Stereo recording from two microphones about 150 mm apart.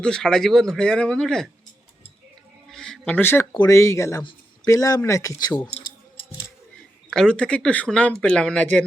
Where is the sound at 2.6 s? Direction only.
5° left (ahead or behind).